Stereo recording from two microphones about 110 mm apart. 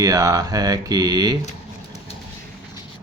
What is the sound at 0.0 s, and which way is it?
Speech, 35° right (ahead or behind).